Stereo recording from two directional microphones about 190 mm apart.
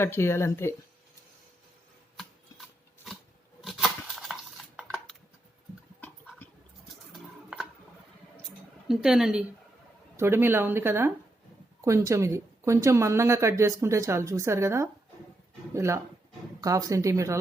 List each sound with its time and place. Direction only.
0.0 s speech: 10° left (ahead or behind)
3.6 s dishes: centre (ahead or behind)
7.1 s a sound: 5° right (ahead or behind)
10.2 s speech: 10° right (ahead or behind)